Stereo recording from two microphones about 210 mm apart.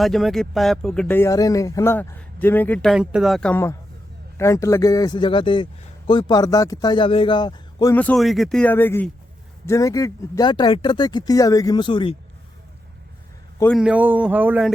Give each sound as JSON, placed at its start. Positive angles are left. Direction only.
{"t": 0.0, "sound": "a man's voice", "side_deg": 0}
{"t": 13.7, "sound": "speech", "side_deg": -5}